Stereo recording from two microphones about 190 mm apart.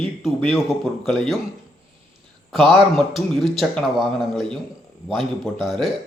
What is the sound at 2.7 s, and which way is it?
A man's voice, centre (ahead or behind).